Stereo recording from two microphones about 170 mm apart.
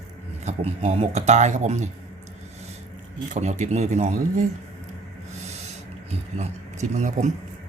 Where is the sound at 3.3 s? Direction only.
45° right (ahead or behind).